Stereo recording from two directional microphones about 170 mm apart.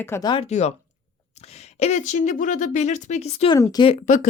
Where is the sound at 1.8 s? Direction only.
40° left (ahead or behind).